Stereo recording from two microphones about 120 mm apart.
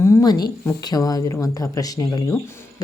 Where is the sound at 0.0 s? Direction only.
20° left (ahead or behind).